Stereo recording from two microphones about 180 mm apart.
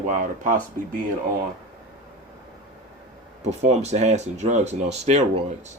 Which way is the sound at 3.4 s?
40° right (ahead or behind).